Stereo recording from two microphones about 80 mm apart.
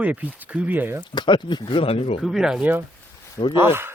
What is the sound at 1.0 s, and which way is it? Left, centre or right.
Speech, left.